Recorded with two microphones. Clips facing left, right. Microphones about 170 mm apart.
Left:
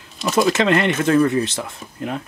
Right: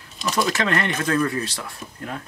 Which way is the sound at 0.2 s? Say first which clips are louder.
Left 6 dB; 25° left (ahead or behind).